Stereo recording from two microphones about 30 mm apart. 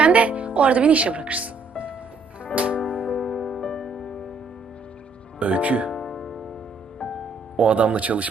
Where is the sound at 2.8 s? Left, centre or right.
Left.